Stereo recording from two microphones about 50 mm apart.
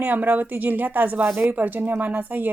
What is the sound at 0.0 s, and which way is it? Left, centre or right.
Speech, right.